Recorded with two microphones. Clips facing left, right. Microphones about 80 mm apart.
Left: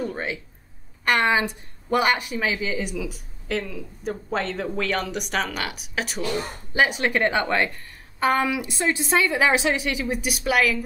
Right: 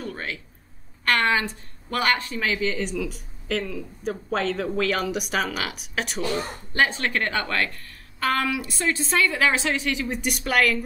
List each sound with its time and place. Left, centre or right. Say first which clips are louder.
0.0 s a woman's voice: left 4 dB; centre
6.7 s a woman's voice: left 2 dB; centre